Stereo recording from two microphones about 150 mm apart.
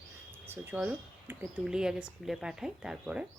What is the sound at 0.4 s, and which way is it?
Speech, 15° right (ahead or behind).